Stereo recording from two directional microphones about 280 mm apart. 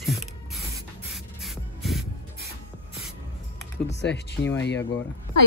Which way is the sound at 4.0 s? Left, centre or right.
Left.